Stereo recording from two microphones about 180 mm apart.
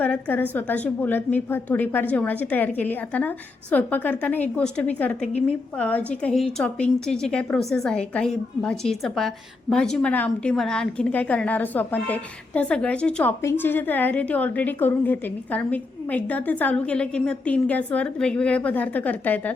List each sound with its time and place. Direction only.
0.0 s a woman's voice: 10° left (ahead or behind)